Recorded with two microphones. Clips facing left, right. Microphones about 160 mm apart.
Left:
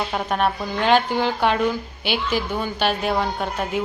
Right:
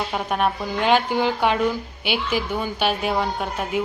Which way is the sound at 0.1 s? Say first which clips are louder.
Left 1 dB; 5° right (ahead or behind).